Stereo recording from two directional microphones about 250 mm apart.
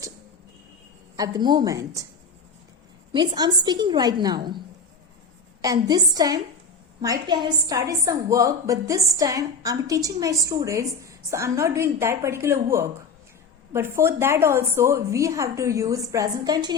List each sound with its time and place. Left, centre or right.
1.1 s a woman's voice: centre
3.1 s a woman's voice: centre
5.6 s a woman's voice: centre